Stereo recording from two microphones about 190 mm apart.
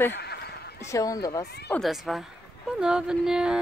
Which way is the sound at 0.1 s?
60° left (ahead or behind).